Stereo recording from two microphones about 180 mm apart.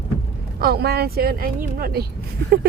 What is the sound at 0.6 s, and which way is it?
Speech, 60° right (ahead or behind).